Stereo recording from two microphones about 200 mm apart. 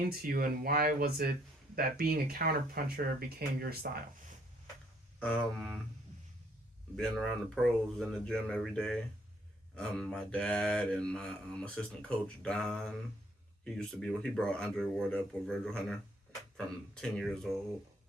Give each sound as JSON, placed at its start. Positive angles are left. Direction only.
{"t": 0.1, "sound": "speech", "side_deg": -50}
{"t": 5.2, "sound": "mantra", "side_deg": 5}
{"t": 6.9, "sound": "mantra", "side_deg": 0}